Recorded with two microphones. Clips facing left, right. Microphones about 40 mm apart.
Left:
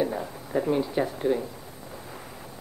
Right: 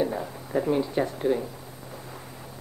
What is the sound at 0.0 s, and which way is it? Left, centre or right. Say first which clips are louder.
Speech: even; centre.